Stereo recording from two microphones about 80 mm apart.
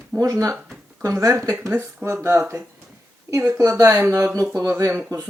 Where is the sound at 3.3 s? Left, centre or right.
Right.